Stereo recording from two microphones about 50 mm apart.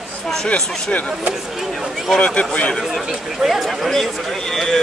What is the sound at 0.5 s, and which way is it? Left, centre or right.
Speech, centre.